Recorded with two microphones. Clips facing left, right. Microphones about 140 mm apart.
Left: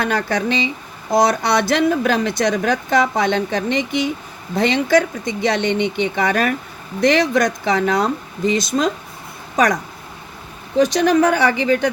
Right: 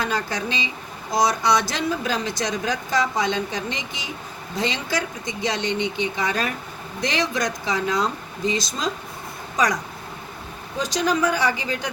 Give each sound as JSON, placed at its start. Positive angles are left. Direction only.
{"t": 0.0, "sound": "a woman's voice", "side_deg": 60}
{"t": 10.8, "sound": "a woman's voice", "side_deg": 60}